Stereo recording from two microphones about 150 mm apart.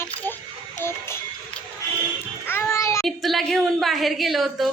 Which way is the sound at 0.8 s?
15° left (ahead or behind).